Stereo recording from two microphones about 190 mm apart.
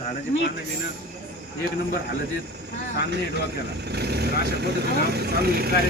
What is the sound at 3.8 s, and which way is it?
Speech, 60° right (ahead or behind).